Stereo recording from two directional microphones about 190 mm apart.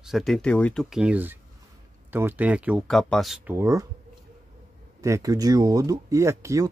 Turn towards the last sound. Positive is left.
turn(degrees=-15)  # may be behind; listen again after turning